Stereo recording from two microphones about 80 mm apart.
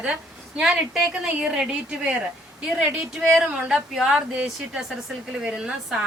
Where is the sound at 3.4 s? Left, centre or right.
Centre.